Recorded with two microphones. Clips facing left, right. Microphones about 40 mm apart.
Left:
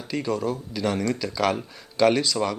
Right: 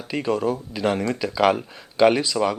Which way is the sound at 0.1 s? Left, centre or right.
Right.